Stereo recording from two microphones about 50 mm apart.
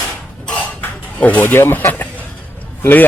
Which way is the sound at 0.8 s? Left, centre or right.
Left.